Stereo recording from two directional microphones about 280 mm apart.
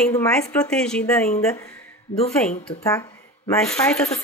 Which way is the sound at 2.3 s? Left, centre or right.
Centre.